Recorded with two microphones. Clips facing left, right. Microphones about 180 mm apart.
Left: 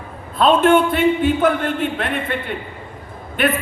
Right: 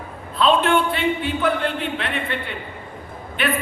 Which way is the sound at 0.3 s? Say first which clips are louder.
Left 4 dB; 45° left (ahead or behind).